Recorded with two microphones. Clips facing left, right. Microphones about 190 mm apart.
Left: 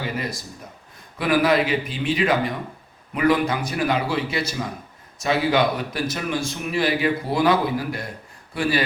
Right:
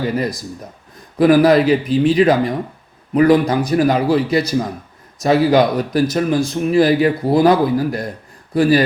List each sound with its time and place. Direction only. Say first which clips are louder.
0.0 s speech: right 8 dB; 40° right (ahead or behind)